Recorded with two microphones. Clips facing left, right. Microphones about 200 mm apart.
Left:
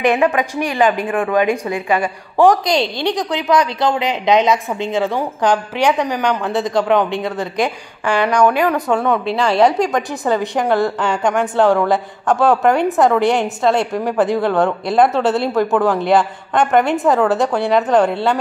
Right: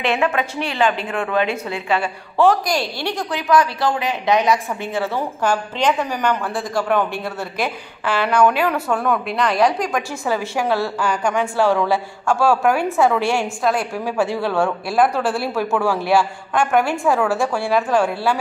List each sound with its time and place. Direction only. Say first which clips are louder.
0.0 s a woman's voice: left 5 dB; 15° left (ahead or behind)